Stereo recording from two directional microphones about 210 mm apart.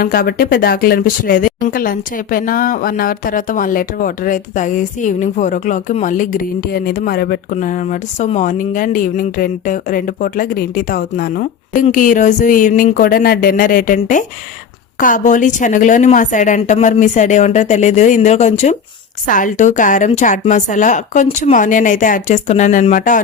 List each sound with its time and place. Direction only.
0.0 s speech: 45° left (ahead or behind)